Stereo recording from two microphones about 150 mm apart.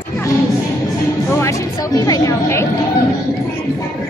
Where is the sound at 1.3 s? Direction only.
20° left (ahead or behind).